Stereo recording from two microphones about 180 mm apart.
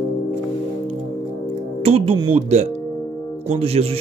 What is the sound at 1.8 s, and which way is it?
Speech, 35° right (ahead or behind).